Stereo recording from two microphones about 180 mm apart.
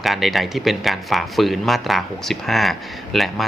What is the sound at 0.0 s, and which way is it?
A man's voice, centre (ahead or behind).